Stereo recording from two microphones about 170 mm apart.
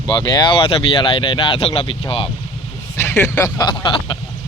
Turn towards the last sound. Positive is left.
turn(degrees=25)  # may be behind; listen again after turning